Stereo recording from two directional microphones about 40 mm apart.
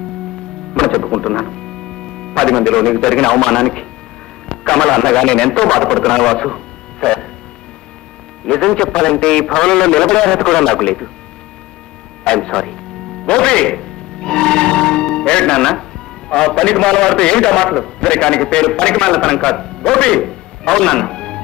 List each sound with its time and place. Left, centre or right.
0.7 s music: left
1.1 s a man's voice: centre
8.5 s a man's voice: centre
12.3 s speech: centre
13.3 s music: left
16.3 s a man's voice: centre